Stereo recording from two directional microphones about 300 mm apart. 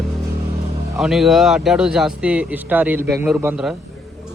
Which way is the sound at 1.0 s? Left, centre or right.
Centre.